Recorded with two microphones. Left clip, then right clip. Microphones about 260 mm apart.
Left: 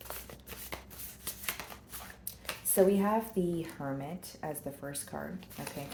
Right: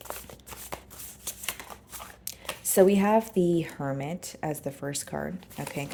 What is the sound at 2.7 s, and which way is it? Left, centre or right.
A woman's voice, right.